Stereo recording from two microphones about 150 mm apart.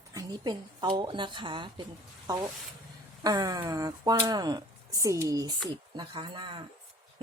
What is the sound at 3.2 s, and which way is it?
A woman's voice, 25° right (ahead or behind).